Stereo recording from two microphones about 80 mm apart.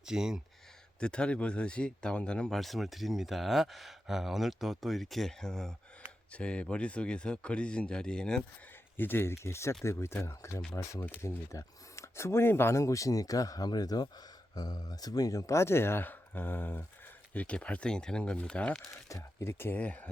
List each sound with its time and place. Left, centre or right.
0.0 s speech: centre
0.9 s a man's voice: centre
2.6 s a man's voice: centre
9.0 s a man's voice: left
19.0 s speech: left; by 20.1 s centre